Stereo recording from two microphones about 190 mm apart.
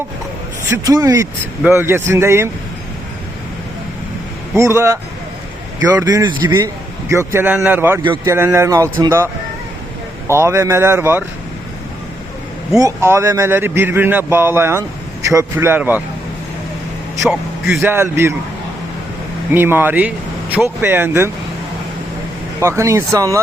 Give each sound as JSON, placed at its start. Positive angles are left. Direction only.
{"t": 0.7, "sound": "speech", "side_deg": -20}
{"t": 4.5, "sound": "speech", "side_deg": -15}
{"t": 12.8, "sound": "speech", "side_deg": -15}
{"t": 17.7, "sound": "speech", "side_deg": -15}
{"t": 19.5, "sound": "speech", "side_deg": -10}
{"t": 22.6, "sound": "speech", "side_deg": -15}